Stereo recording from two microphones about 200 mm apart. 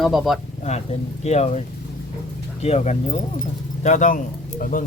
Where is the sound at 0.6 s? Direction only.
35° left (ahead or behind).